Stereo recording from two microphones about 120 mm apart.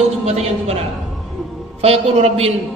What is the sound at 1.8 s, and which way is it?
Speech, 60° right (ahead or behind).